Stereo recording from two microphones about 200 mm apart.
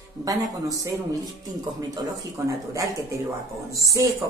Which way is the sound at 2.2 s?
15° right (ahead or behind).